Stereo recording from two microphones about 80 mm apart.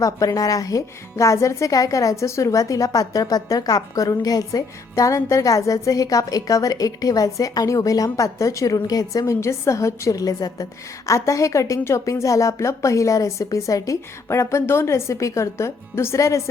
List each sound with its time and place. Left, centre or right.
0.0 s a woman's voice: left